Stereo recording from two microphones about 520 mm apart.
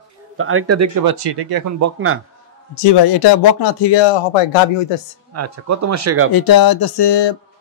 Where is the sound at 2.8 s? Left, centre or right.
Left.